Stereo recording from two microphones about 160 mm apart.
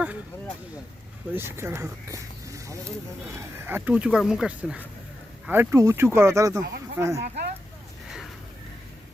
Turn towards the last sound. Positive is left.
turn(degrees=-20)  # may be behind; listen again after turning